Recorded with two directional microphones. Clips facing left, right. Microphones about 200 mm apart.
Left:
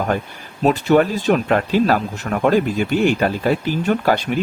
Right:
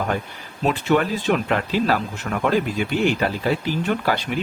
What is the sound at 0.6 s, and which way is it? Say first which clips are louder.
Speech: left 5 dB; 40° left (ahead or behind).